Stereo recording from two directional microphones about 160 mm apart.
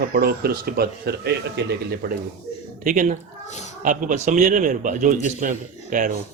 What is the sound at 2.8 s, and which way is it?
A man's voice, 55° right (ahead or behind).